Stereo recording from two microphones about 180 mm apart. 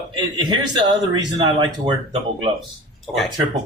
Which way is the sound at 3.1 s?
Centre (ahead or behind).